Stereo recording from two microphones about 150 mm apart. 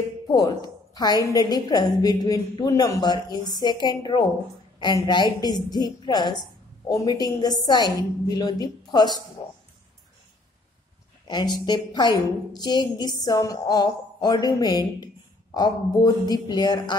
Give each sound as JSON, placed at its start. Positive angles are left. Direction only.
{"t": 0.3, "sound": "a woman's voice", "side_deg": 25}
{"t": 11.2, "sound": "a woman's voice", "side_deg": 30}